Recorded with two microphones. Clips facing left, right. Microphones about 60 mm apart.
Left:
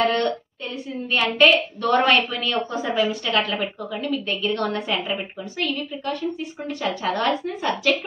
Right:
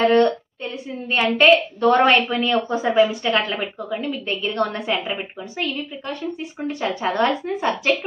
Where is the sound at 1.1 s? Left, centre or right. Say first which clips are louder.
Right 2 dB; right.